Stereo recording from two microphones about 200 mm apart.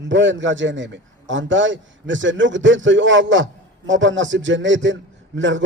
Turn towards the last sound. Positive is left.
turn(degrees=-65)  # may be behind; listen again after turning